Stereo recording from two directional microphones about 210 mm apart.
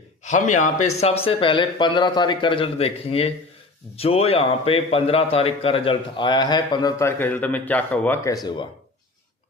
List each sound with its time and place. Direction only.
0.3 s a man's voice: 35° left (ahead or behind); by 8.4 s 10° left (ahead or behind)